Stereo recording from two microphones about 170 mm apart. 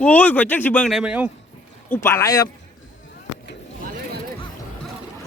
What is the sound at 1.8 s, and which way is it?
Speech, 15° left (ahead or behind).